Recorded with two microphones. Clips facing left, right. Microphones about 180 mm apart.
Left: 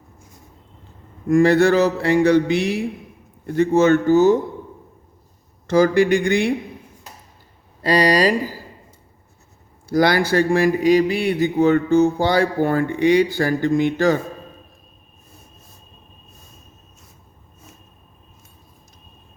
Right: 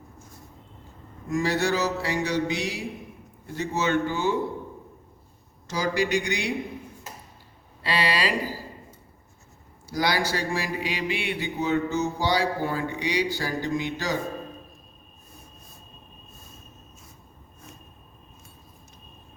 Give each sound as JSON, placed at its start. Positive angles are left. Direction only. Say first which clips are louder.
{"t": 1.3, "sound": "mantra", "louder": "left 11 dB", "side_deg": 55}
{"t": 3.4, "sound": "speech", "louder": "left 12 dB", "side_deg": 55}
{"t": 5.6, "sound": "speech", "louder": "left 11 dB", "side_deg": 55}
{"t": 7.8, "sound": "speech", "louder": "left 10 dB", "side_deg": 45}
{"t": 9.9, "sound": "speech", "louder": "left 9 dB", "side_deg": 55}